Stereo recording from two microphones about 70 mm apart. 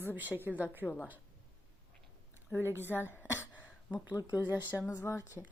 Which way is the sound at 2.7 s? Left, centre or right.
Left.